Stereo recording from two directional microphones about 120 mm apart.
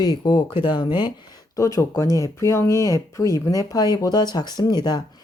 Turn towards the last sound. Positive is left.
turn(degrees=35)  # may be behind; listen again after turning